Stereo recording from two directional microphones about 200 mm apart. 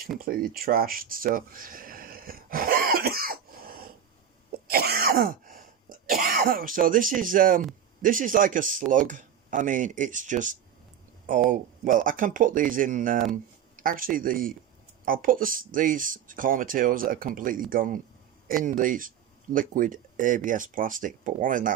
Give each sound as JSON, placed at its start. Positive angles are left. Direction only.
{"t": 0.3, "sound": "a sound", "side_deg": -45}
{"t": 4.7, "sound": "throat clearing", "side_deg": -50}
{"t": 8.0, "sound": "speech", "side_deg": -40}